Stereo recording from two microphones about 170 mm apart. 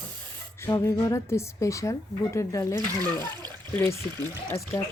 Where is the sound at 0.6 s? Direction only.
15° left (ahead or behind).